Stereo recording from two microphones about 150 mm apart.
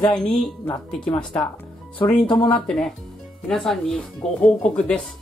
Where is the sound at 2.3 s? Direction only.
35° left (ahead or behind).